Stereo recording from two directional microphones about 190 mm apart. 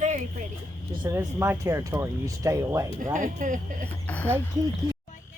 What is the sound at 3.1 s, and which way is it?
Speech, 45° right (ahead or behind).